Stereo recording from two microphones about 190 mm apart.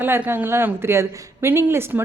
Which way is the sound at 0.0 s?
10° right (ahead or behind).